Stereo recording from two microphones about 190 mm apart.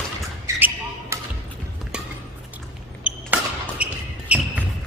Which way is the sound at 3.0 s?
5° right (ahead or behind).